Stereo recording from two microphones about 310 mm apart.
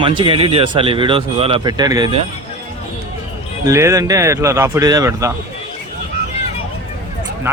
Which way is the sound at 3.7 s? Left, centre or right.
Centre.